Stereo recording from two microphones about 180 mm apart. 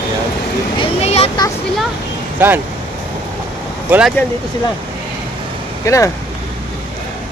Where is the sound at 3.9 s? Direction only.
5° right (ahead or behind).